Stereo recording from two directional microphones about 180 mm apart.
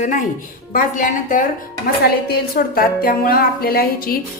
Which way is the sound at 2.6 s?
55° left (ahead or behind).